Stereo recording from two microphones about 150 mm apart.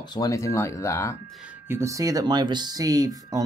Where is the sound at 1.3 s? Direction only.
5° right (ahead or behind); by 3.4 s 25° right (ahead or behind).